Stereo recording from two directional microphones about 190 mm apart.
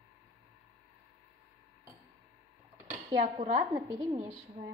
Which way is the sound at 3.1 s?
35° right (ahead or behind).